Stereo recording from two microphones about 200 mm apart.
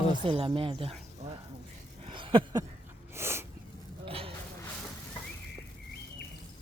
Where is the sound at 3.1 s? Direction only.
10° right (ahead or behind).